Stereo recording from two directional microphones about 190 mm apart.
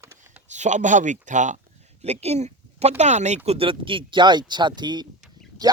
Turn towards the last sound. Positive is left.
turn(degrees=-20)  # may be behind; listen again after turning